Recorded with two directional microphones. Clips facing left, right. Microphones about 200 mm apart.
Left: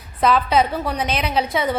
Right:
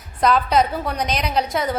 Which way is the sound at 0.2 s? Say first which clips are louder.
Even; centre (ahead or behind).